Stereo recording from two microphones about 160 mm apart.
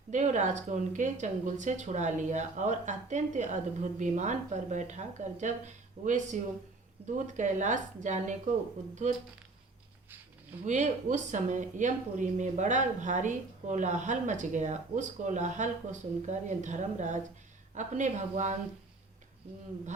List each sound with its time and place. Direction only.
0.1 s speech: 50° right (ahead or behind)
7.0 s speech: 10° right (ahead or behind)
7.3 s speech: 50° right (ahead or behind)
10.7 s speech: 50° right (ahead or behind)